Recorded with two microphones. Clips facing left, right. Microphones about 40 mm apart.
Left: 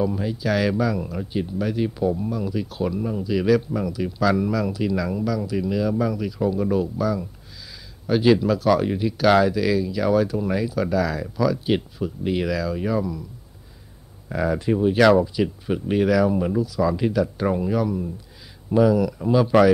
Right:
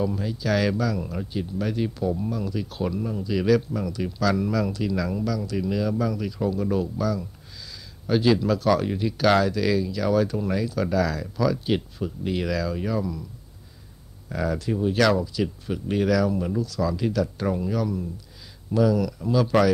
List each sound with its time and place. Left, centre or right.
0.0 s speech: centre
14.3 s speech: centre